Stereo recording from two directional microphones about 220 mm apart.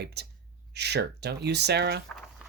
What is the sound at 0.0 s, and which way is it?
Speech, 50° right (ahead or behind).